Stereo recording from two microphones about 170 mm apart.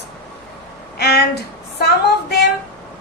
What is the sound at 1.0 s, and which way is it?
A woman's voice, 75° left (ahead or behind).